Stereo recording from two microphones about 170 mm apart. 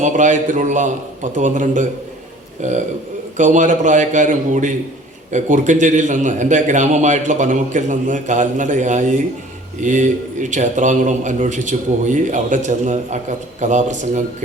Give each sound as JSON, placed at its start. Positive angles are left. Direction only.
{"t": 0.0, "sound": "a man's voice", "side_deg": -45}